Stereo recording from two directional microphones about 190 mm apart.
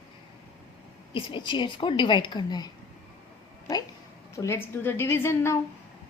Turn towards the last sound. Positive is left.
turn(degrees=15)  # may be behind; listen again after turning